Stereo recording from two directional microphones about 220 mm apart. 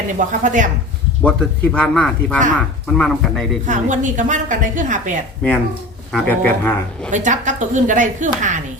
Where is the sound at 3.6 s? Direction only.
35° right (ahead or behind).